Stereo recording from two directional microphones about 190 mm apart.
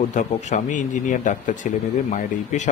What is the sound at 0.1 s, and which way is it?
Speech, 40° left (ahead or behind).